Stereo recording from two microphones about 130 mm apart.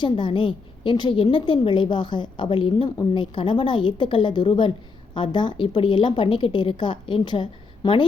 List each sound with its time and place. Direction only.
0.0 s a woman's voice: 40° left (ahead or behind)